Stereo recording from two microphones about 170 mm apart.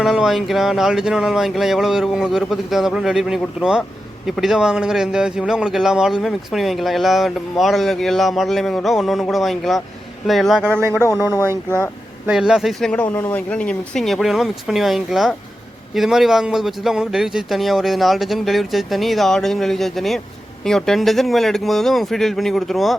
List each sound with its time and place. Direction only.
0.0 s a man's voice: centre (ahead or behind)
10.8 s speech: 15° right (ahead or behind)
11.0 s speech: 20° left (ahead or behind)
12.2 s a man's voice: 5° right (ahead or behind)